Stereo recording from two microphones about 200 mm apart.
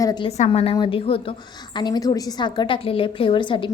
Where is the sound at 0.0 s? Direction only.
20° left (ahead or behind).